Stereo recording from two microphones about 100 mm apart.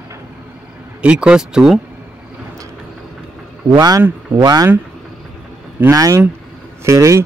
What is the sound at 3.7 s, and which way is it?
Speech, 35° right (ahead or behind).